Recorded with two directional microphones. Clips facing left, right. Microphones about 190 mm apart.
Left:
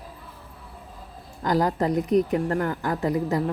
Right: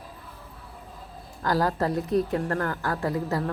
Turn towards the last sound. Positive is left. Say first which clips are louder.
# left 3 dB
turn(degrees=20)  # may be behind; listen again after turning